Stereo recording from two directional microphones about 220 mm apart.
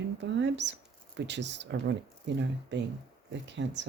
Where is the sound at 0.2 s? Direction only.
55° right (ahead or behind).